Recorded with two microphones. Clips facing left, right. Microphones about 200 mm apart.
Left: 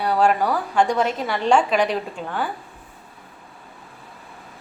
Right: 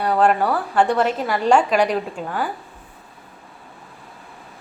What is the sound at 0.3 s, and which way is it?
A woman's voice, 5° right (ahead or behind).